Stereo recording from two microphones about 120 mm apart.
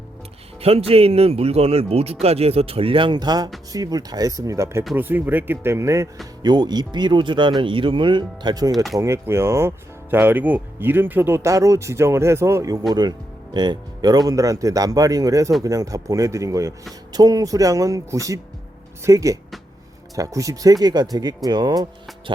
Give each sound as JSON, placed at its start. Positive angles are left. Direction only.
{"t": 0.6, "sound": "speech", "side_deg": -55}
{"t": 4.9, "sound": "speech", "side_deg": -15}
{"t": 6.4, "sound": "speech", "side_deg": -35}
{"t": 8.9, "sound": "speech", "side_deg": -25}